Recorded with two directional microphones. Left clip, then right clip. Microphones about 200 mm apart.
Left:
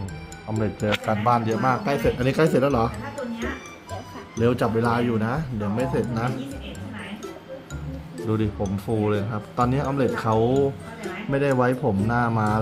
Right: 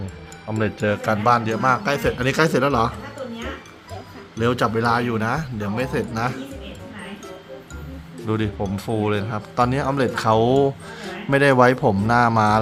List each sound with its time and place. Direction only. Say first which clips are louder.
0.5 s speech: right 4 dB; 20° right (ahead or behind)
1.0 s a man's voice: right 4 dB; centre (ahead or behind)
4.4 s speech: right 2 dB; 5° right (ahead or behind)
8.3 s speech: right 2 dB; 5° right (ahead or behind)